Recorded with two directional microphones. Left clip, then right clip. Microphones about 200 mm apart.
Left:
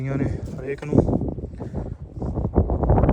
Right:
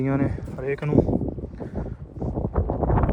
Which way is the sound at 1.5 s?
5° left (ahead or behind).